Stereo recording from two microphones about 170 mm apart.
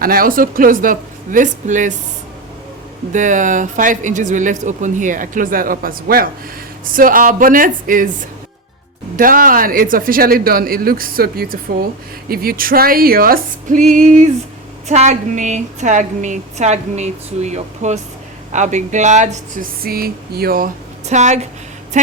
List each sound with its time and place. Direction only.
0.0 s speech: 60° right (ahead or behind)
3.1 s a woman's voice: 50° right (ahead or behind)
9.1 s a woman's voice: 55° right (ahead or behind)
19.8 s speech: 60° right (ahead or behind)
21.1 s a woman's voice: 45° right (ahead or behind)